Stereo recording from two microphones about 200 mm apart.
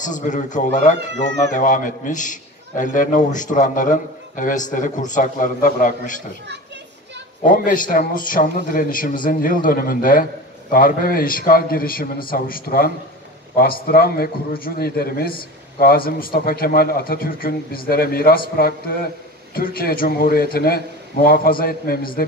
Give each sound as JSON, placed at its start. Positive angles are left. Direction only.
{"t": 0.0, "sound": "speech", "side_deg": 40}
{"t": 7.4, "sound": "a man's voice", "side_deg": 40}
{"t": 19.5, "sound": "a man's voice", "side_deg": 45}